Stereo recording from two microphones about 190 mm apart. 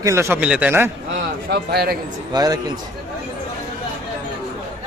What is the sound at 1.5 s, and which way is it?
Speech, 55° right (ahead or behind).